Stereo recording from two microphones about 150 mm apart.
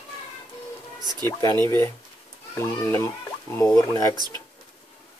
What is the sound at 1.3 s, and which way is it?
Speech, 25° left (ahead or behind).